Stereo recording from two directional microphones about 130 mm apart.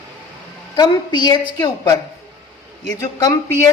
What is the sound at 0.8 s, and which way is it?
A woman's voice, 30° left (ahead or behind).